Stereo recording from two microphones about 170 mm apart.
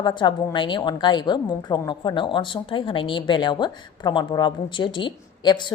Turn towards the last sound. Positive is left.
turn(degrees=25)  # may be behind; listen again after turning